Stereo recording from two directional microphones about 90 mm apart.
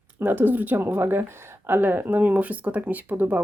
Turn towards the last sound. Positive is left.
turn(degrees=-20)  # may be behind; listen again after turning